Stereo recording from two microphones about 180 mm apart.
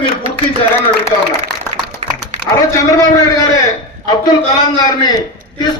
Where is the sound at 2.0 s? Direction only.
35° right (ahead or behind).